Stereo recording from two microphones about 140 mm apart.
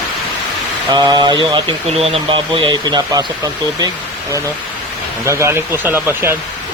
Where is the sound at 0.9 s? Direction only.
30° right (ahead or behind).